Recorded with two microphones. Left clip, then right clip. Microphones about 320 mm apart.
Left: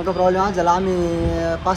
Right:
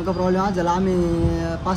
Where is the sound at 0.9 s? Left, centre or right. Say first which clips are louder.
Left 1 dB; left.